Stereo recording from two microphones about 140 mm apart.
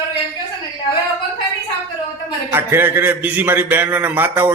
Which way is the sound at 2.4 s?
15° right (ahead or behind).